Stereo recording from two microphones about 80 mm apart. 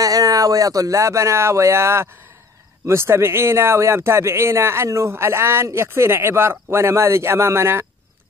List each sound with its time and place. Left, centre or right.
0.0 s speech: right